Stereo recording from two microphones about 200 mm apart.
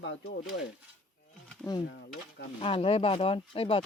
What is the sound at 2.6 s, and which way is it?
Speech, 30° left (ahead or behind).